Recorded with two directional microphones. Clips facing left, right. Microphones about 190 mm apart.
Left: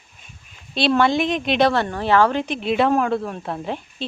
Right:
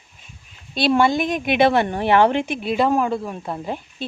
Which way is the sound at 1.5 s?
15° right (ahead or behind).